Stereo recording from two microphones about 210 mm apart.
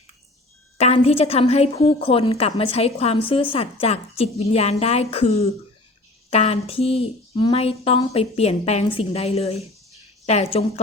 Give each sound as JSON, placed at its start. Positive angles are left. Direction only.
{"t": 0.8, "sound": "a woman's voice", "side_deg": 30}